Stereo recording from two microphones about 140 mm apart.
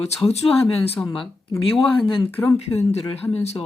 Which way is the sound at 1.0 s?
5° left (ahead or behind).